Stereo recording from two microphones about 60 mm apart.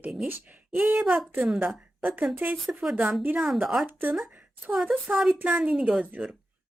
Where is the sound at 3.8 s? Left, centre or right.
Right.